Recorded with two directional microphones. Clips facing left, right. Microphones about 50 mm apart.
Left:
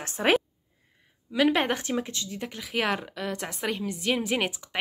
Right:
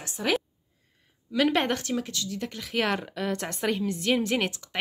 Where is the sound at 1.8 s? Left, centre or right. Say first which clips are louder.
Even; left.